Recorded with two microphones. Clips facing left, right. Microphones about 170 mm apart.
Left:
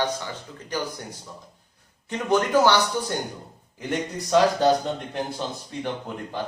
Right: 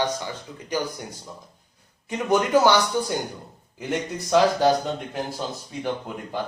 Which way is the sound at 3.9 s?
10° right (ahead or behind).